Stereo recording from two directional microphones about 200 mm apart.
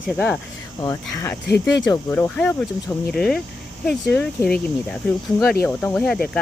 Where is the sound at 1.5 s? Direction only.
60° left (ahead or behind).